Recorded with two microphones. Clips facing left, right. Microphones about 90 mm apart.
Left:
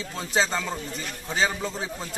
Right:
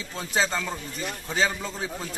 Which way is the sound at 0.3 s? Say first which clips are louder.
Left 1 dB; 25° left (ahead or behind).